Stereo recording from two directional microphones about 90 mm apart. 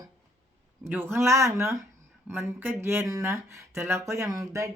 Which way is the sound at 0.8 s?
25° right (ahead or behind).